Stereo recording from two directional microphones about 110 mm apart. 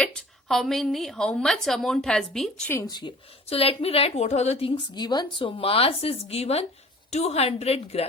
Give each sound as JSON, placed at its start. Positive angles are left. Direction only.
{"t": 0.0, "sound": "a woman's voice", "side_deg": 5}
{"t": 3.5, "sound": "a woman's voice", "side_deg": 60}
{"t": 4.7, "sound": "a woman's voice", "side_deg": 40}